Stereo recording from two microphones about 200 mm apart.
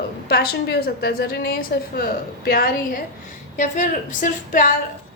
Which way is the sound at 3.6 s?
40° left (ahead or behind).